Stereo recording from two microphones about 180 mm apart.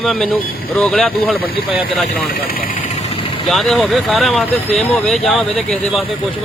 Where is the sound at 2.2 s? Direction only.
55° left (ahead or behind).